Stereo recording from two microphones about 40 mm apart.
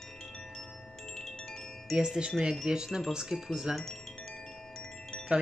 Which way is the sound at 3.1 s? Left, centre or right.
Centre.